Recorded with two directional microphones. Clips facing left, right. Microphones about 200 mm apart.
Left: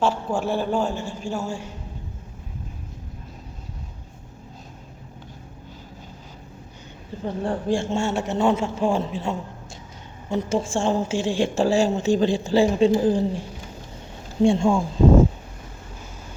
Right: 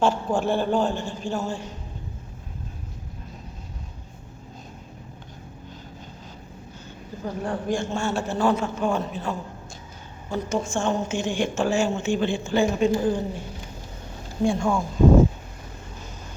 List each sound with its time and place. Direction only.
0.0 s a man's voice: 5° left (ahead or behind)
7.3 s a man's voice: 30° left (ahead or behind)
14.4 s a man's voice: 25° left (ahead or behind)